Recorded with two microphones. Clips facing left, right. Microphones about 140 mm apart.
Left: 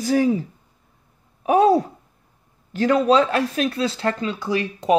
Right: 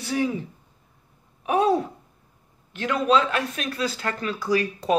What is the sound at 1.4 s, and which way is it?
Speech, 35° left (ahead or behind).